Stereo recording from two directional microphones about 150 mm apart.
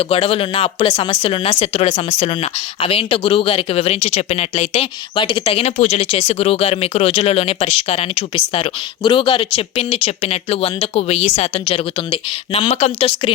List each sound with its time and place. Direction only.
0.0 s speech: 40° left (ahead or behind)